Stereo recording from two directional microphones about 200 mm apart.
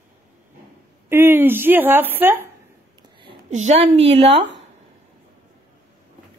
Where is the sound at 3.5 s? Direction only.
35° right (ahead or behind).